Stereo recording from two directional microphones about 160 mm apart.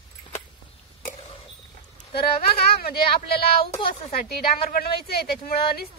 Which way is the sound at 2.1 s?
75° left (ahead or behind).